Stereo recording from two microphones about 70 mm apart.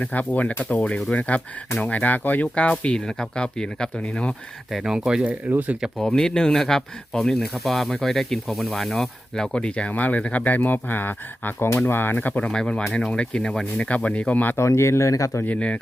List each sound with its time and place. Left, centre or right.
0.0 s speech: left
4.7 s speech: centre
6.0 s speech: centre
12.5 s speech: centre
14.5 s speech: left
15.4 s speech: centre